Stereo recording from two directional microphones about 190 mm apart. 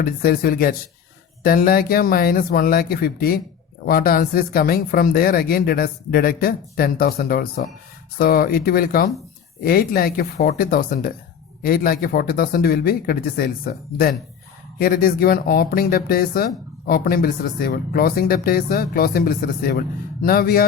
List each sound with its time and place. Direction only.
0.0 s speech: 50° left (ahead or behind)